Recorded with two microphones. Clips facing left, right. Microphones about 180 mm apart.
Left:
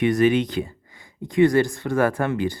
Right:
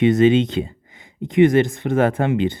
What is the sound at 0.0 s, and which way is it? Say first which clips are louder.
Speech: right 4 dB; 20° right (ahead or behind).